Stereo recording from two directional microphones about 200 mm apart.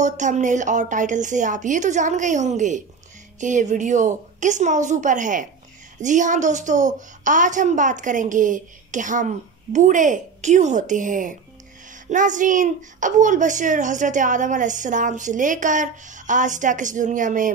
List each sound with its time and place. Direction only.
0.0 s a woman's voice: 35° right (ahead or behind)